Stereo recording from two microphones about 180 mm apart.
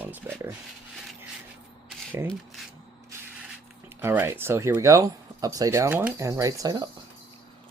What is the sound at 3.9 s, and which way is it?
Speech, 10° right (ahead or behind).